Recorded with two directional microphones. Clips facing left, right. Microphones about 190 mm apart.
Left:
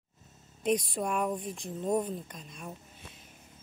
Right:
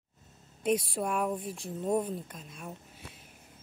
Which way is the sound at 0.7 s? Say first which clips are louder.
Even; 5° right (ahead or behind).